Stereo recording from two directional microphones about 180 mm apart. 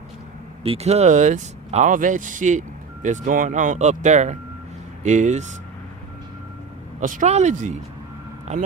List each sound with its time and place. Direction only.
0.6 s speech: 35° right (ahead or behind)
7.0 s speech: 45° right (ahead or behind)